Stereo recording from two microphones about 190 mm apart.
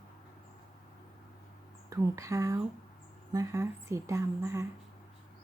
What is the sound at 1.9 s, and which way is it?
Speech, 15° right (ahead or behind).